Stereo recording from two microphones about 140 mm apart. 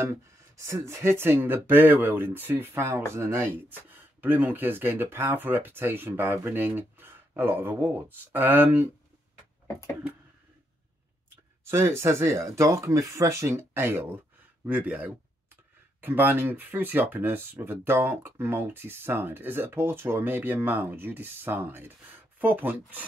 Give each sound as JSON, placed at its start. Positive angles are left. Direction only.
{"t": 0.0, "sound": "speech", "side_deg": -20}
{"t": 11.7, "sound": "speech", "side_deg": -20}